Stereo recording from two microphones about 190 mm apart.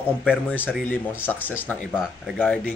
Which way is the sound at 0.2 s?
5° right (ahead or behind).